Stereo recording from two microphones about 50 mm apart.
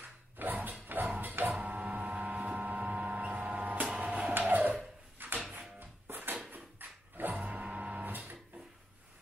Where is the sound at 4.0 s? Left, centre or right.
Right.